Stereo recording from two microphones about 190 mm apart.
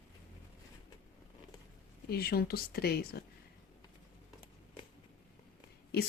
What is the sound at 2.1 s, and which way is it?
Speech, 55° left (ahead or behind).